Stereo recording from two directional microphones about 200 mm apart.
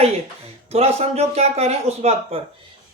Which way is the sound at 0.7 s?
30° right (ahead or behind).